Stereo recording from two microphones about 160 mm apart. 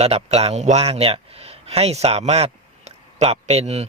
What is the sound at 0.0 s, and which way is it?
A man's voice, 40° right (ahead or behind).